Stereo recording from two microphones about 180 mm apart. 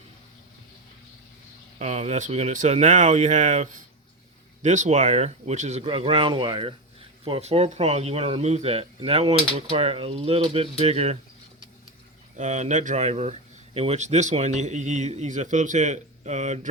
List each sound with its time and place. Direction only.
1.8 s speech: 40° right (ahead or behind)
12.4 s speech: 40° right (ahead or behind)